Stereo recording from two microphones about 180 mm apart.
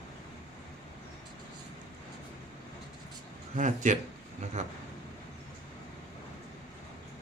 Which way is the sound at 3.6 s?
45° right (ahead or behind).